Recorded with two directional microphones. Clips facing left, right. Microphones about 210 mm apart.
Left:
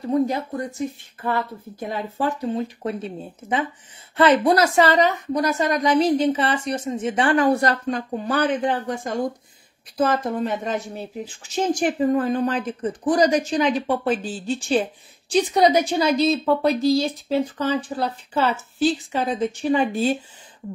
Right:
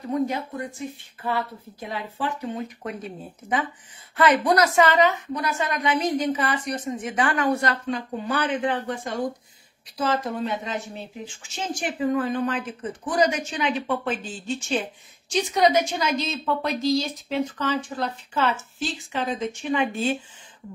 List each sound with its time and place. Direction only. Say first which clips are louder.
0.1 s speech: left 4 dB; 35° left (ahead or behind)